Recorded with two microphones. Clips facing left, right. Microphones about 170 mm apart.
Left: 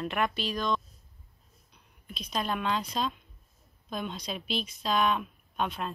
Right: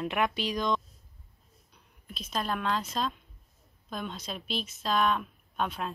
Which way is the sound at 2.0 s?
Centre (ahead or behind).